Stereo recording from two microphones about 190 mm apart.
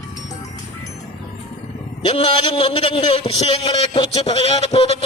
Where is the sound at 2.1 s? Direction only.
30° left (ahead or behind).